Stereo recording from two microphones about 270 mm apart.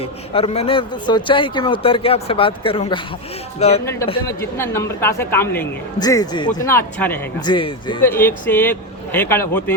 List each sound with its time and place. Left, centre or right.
0.0 s a man's voice: left
4.1 s speech: centre